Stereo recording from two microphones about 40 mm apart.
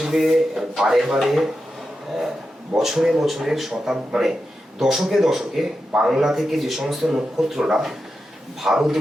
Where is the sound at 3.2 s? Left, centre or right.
Centre.